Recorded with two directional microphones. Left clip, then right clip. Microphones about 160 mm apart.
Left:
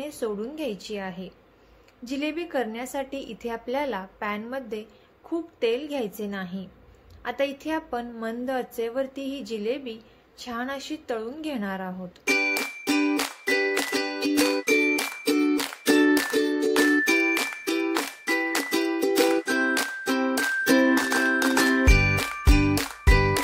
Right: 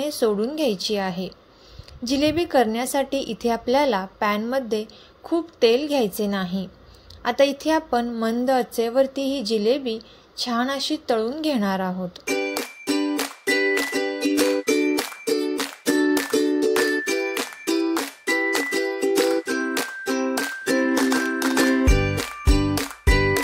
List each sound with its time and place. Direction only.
0.0 s a woman's voice: 35° right (ahead or behind)
12.3 s music: 5° right (ahead or behind)